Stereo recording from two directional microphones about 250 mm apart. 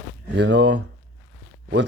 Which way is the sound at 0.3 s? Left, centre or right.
Right.